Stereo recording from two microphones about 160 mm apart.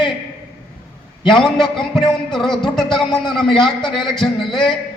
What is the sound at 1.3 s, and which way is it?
A man's voice, centre (ahead or behind).